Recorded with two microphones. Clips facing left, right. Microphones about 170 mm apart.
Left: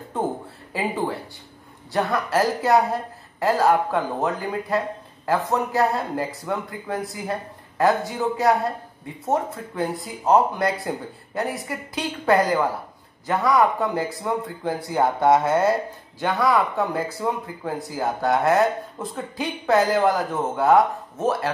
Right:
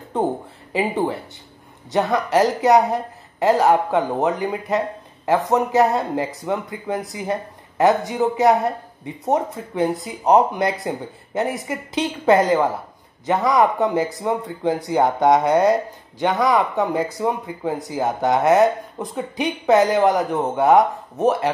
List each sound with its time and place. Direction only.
0.7 s a woman's voice: 20° right (ahead or behind)